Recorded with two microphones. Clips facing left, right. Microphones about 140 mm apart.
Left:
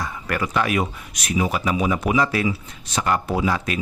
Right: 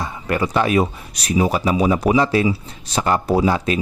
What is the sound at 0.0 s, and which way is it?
Speech, 25° right (ahead or behind).